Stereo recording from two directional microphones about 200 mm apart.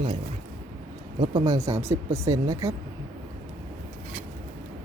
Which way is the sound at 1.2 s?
20° right (ahead or behind).